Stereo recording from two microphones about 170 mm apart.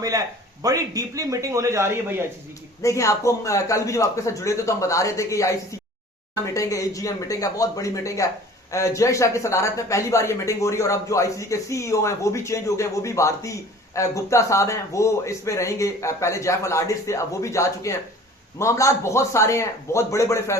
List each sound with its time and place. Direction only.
0.0 s a man's voice: 20° right (ahead or behind)
2.8 s speech: 20° left (ahead or behind)